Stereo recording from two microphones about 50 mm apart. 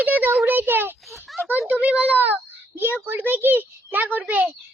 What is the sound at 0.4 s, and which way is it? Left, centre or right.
Speech, right.